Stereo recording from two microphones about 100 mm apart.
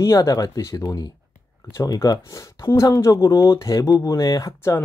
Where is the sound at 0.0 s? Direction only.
35° left (ahead or behind).